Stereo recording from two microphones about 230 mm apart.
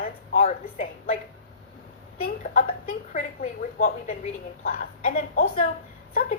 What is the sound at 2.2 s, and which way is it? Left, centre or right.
A woman's voice, left.